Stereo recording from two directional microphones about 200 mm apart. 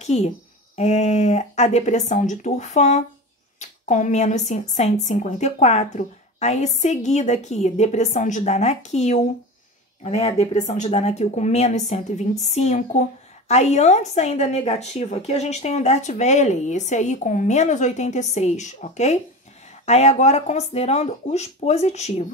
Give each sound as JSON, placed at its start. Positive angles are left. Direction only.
{"t": 0.0, "sound": "a woman's voice", "side_deg": 35}